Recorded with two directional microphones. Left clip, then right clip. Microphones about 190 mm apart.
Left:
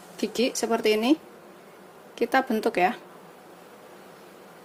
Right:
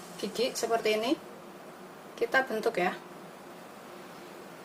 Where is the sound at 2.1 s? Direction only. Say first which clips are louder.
Left 4 dB; 45° left (ahead or behind).